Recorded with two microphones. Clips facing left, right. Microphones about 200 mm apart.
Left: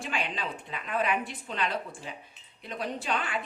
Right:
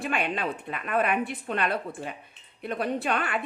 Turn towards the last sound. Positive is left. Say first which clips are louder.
# right 4 dB
turn(degrees=-60)  # may be behind; listen again after turning